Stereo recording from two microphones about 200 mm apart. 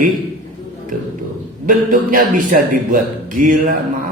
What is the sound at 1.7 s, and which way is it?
A man's voice, 45° right (ahead or behind).